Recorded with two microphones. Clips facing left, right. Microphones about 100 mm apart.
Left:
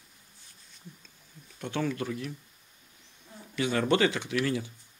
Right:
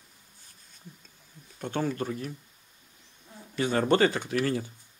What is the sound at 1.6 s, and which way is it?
Speech, 40° right (ahead or behind).